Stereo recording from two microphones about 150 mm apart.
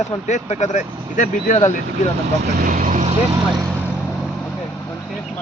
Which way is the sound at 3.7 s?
10° right (ahead or behind).